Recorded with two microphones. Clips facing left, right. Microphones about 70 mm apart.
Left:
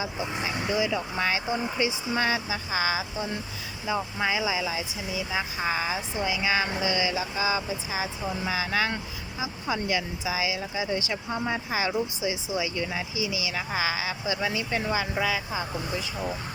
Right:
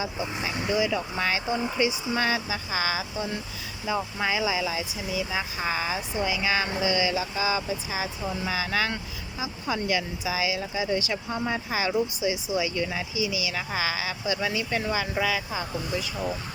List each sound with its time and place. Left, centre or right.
0.6 s speech: centre